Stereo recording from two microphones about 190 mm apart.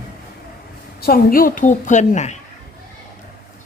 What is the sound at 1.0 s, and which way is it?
A woman's voice, 50° left (ahead or behind).